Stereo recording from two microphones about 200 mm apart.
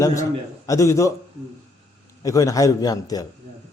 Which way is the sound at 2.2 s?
15° left (ahead or behind).